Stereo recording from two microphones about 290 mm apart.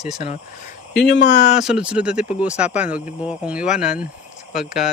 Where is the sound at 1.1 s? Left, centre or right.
Left.